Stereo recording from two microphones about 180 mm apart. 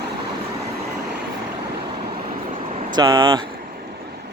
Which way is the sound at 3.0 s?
25° right (ahead or behind).